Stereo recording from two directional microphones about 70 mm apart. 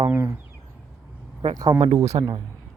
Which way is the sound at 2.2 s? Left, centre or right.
Right.